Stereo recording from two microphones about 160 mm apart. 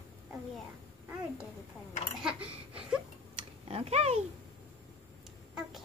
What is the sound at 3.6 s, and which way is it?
Speech, 40° right (ahead or behind).